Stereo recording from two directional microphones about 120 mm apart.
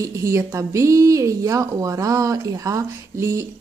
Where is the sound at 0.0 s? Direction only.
25° right (ahead or behind).